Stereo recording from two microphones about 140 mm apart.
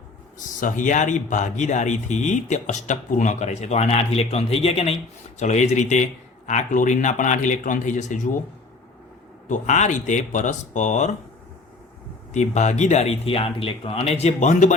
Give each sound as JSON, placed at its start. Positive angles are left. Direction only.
{"t": 0.3, "sound": "speech", "side_deg": 65}
{"t": 5.4, "sound": "speech", "side_deg": 55}
{"t": 9.5, "sound": "speech", "side_deg": 60}
{"t": 12.3, "sound": "speech", "side_deg": 55}